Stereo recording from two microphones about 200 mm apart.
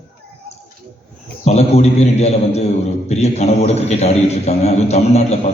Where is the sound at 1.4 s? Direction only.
35° left (ahead or behind).